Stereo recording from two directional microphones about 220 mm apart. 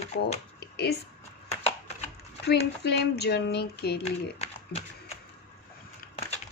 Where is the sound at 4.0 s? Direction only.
30° left (ahead or behind).